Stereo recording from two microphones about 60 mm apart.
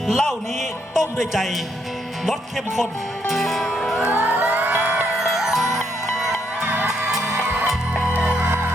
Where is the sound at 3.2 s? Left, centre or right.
Centre.